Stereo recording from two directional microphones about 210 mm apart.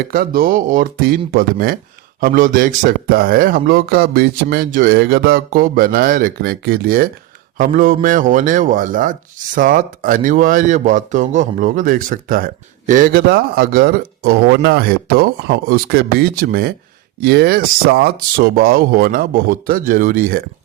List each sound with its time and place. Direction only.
0.1 s speech: 45° right (ahead or behind)